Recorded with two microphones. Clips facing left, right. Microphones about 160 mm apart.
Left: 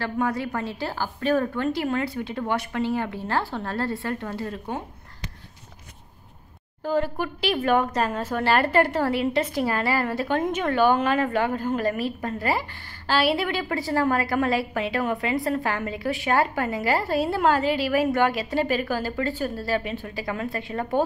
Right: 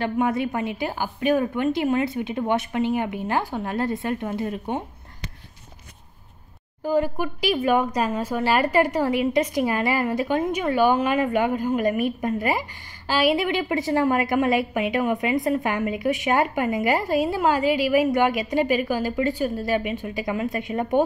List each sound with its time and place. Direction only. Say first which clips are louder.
0.0 s a woman's voice: right 3 dB; 20° right (ahead or behind)
6.8 s speech: right 2 dB; 15° right (ahead or behind)